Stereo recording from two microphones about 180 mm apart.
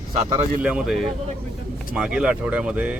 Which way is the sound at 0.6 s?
5° right (ahead or behind).